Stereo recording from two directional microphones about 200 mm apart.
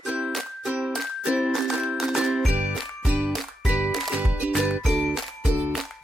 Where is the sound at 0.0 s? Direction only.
5° right (ahead or behind).